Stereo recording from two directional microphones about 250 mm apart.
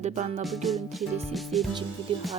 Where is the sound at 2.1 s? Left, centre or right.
Right.